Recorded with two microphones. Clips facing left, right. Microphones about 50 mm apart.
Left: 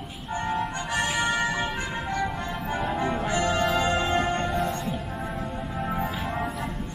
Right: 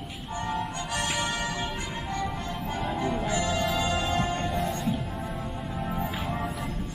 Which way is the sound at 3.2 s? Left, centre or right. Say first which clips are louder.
Left 3 dB; left.